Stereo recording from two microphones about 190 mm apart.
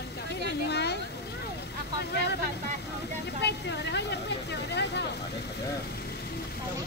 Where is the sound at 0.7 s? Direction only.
60° left (ahead or behind).